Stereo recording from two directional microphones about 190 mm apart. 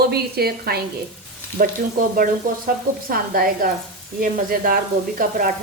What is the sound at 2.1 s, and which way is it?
Speech, 50° right (ahead or behind).